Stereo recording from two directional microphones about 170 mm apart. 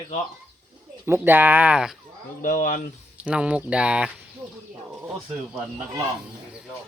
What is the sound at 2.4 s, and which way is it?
Speech, 55° left (ahead or behind).